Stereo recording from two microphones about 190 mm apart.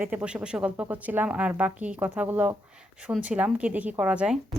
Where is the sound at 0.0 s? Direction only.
5° right (ahead or behind).